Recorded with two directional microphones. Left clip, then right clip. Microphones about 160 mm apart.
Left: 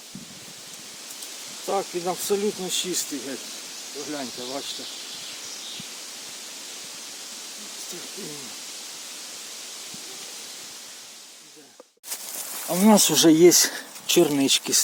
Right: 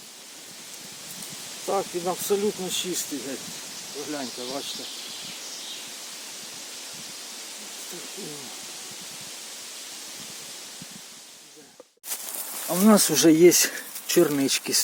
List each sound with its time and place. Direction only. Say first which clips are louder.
1.6 s speech: even; centre (ahead or behind)
4.1 s speech: even; 5° left (ahead or behind)
12.6 s speech: left 1 dB; centre (ahead or behind)